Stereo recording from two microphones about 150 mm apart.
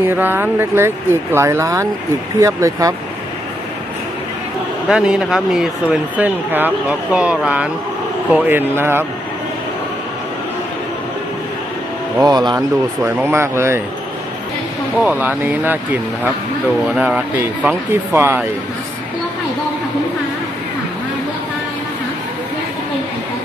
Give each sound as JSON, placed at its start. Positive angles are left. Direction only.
{"t": 0.0, "sound": "speech", "side_deg": -15}
{"t": 4.8, "sound": "speech", "side_deg": -5}
{"t": 12.2, "sound": "speech", "side_deg": -25}
{"t": 15.0, "sound": "speech", "side_deg": -10}